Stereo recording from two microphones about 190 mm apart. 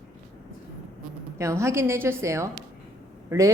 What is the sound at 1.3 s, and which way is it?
Speech, 15° right (ahead or behind).